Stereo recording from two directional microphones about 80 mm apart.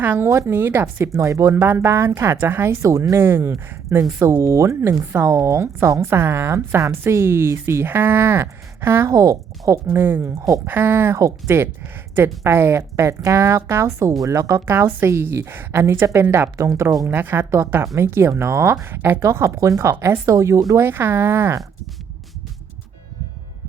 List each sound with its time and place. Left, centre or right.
0.0 s a woman's voice: right
0.3 s a woman's voice: right
1.1 s speech: right
1.5 s a woman's voice: right
2.8 s speech: right
3.2 s speech: right
9.0 s speech: right
9.9 s a woman's voice: right
10.2 s speech: right
10.7 s a woman's voice: right
13.8 s speech: right
17.1 s a woman's voice: right
19.2 s speech: right
20.7 s a woman's voice: right